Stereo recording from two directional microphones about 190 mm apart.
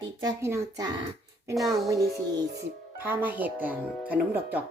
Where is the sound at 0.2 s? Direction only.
20° right (ahead or behind).